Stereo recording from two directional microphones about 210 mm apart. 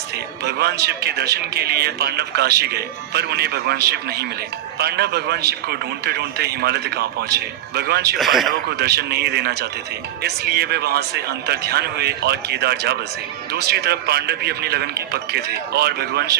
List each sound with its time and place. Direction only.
0.4 s a man's voice: 50° right (ahead or behind)
8.2 s speech: centre (ahead or behind)
8.8 s a man's voice: 50° right (ahead or behind)